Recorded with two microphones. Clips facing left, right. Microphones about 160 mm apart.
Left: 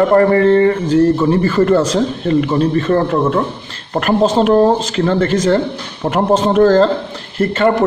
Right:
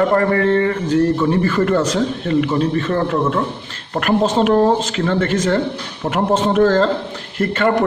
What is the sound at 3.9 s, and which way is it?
Speech, 30° left (ahead or behind).